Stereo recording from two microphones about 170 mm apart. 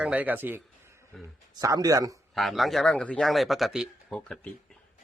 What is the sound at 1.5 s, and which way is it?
Speech, 20° right (ahead or behind).